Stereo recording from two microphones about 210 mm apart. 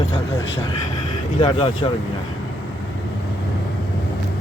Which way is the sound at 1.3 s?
25° left (ahead or behind).